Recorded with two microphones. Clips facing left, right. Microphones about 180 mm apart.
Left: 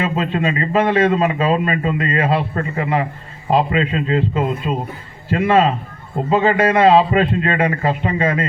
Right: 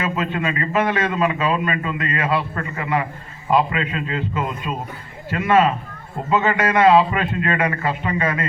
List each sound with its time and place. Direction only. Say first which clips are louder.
0.0 s a man's voice: left 4 dB; 30° left (ahead or behind)